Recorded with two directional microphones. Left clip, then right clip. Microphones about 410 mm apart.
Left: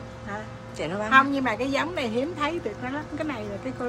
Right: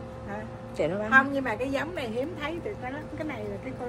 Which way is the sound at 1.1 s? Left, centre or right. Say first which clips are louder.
Left 3 dB; left.